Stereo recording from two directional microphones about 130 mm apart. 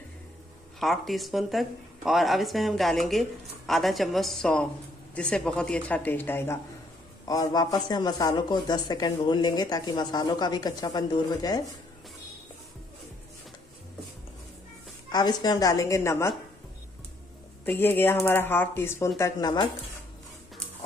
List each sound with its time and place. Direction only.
0.7 s speech: centre (ahead or behind); by 6.6 s 15° left (ahead or behind)
7.2 s a man's voice: 30° left (ahead or behind)
15.0 s a woman's voice: 30° left (ahead or behind)
17.7 s a man's voice: 15° left (ahead or behind); by 19.7 s 30° left (ahead or behind)